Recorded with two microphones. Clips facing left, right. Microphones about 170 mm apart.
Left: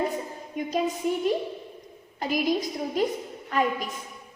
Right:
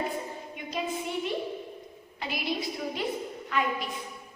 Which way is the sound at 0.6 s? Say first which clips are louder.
Left 10 dB; 40° left (ahead or behind).